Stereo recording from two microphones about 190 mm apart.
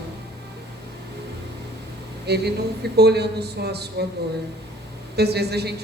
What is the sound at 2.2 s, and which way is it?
A woman's voice, 60° right (ahead or behind).